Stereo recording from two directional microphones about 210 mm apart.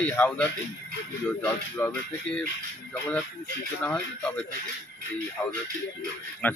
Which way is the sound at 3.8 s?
10° left (ahead or behind).